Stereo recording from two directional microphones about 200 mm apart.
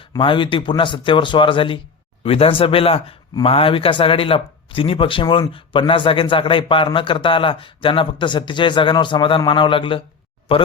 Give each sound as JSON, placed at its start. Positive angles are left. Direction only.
{"t": 0.0, "sound": "speech", "side_deg": 25}